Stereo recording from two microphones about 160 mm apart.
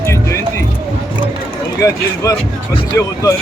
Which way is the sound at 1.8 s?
20° left (ahead or behind).